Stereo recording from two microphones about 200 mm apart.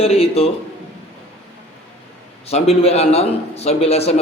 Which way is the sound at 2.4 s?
30° left (ahead or behind).